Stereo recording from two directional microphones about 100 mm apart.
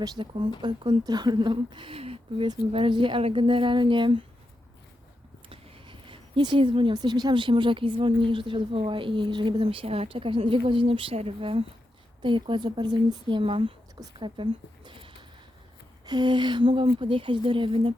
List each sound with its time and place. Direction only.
0.2 s speech: 55° right (ahead or behind)
5.5 s a sound: 60° right (ahead or behind)
6.9 s speech: 45° right (ahead or behind); by 11.6 s 70° right (ahead or behind)
12.2 s speech: 55° right (ahead or behind)
14.2 s speech: 55° right (ahead or behind)
16.0 s speech: 50° right (ahead or behind)